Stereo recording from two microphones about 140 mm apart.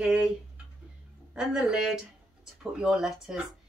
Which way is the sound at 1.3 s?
5° right (ahead or behind).